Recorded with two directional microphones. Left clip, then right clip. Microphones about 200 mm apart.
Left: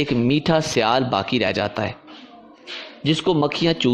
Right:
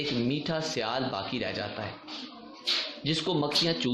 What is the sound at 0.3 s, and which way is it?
A man's voice, 45° left (ahead or behind).